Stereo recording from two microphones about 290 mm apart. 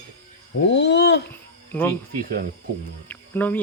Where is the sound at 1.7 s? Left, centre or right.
Centre.